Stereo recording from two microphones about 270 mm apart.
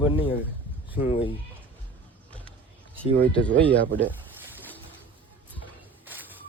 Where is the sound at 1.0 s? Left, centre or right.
Centre.